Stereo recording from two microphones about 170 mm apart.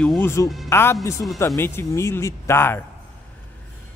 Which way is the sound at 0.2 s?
15° left (ahead or behind).